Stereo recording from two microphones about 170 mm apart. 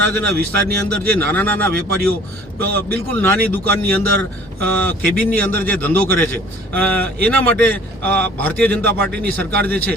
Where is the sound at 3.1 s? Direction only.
10° left (ahead or behind).